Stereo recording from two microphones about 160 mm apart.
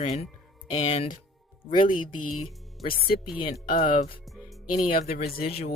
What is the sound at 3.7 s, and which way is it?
Speech, 60° left (ahead or behind).